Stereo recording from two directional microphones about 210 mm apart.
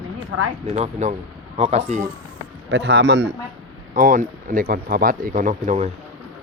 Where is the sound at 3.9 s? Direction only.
40° right (ahead or behind).